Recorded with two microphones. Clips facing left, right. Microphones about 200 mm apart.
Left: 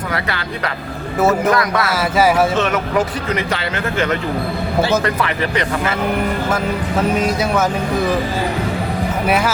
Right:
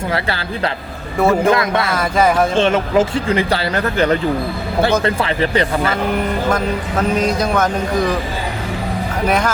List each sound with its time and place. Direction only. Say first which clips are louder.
0.1 s speech: right 1 dB; 30° right (ahead or behind)
1.9 s speech: left 1 dB; 5° left (ahead or behind)
2.6 s speech: right 3 dB; 30° right (ahead or behind)
7.2 s speech: right 1 dB; 5° left (ahead or behind)
9.2 s speech: right 1 dB; 5° left (ahead or behind)